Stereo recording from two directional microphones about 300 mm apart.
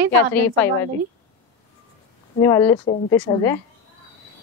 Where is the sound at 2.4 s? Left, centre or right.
Centre.